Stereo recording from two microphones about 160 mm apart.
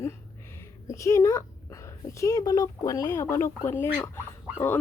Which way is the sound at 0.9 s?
20° left (ahead or behind).